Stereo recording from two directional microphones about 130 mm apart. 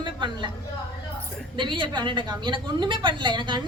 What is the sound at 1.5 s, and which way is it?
A woman's voice, 40° right (ahead or behind).